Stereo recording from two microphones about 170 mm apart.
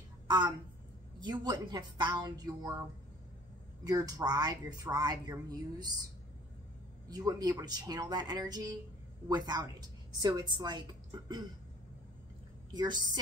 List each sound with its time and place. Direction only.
1.2 s a woman's voice: 25° right (ahead or behind)
3.8 s a woman's voice: 20° right (ahead or behind)
7.1 s a woman's voice: 25° right (ahead or behind)
12.7 s a woman's voice: 25° right (ahead or behind)